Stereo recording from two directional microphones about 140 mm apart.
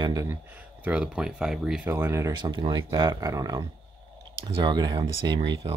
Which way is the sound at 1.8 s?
20° right (ahead or behind).